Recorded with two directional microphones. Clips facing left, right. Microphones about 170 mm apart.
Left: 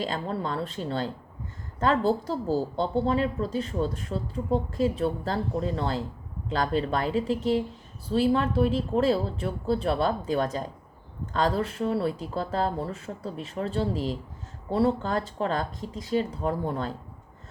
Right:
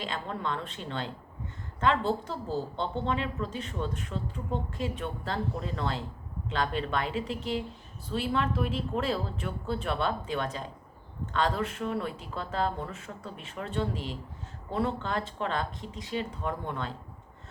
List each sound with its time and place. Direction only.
0.0 s speech: 35° left (ahead or behind)